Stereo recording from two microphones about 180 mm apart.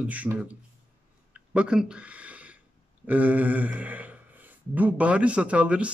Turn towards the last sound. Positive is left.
turn(degrees=-5)  # may be behind; listen again after turning